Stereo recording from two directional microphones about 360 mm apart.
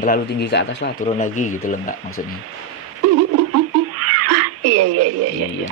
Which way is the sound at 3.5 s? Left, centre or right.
Right.